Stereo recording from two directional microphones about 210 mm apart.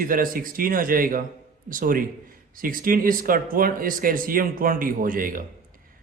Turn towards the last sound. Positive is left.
turn(degrees=-40)  # may be behind; listen again after turning